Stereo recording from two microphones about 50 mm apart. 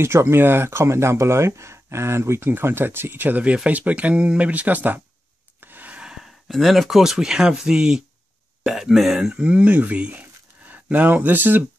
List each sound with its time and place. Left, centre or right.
0.0 s speech: right
2.5 s speech: right
3.4 s speech: right
5.6 s rub: right
5.9 s sigh: centre
6.5 s speech: centre
9.4 s speech: right